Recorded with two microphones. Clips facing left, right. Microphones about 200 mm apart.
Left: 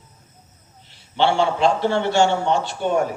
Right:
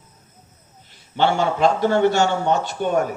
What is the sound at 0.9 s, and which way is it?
A man's voice, 50° right (ahead or behind).